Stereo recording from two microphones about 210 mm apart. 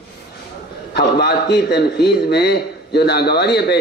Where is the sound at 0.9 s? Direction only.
50° left (ahead or behind).